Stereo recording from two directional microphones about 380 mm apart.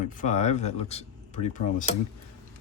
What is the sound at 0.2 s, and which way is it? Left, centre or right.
Speech, centre.